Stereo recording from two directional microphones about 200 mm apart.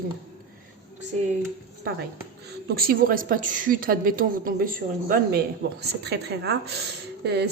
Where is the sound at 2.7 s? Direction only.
45° right (ahead or behind).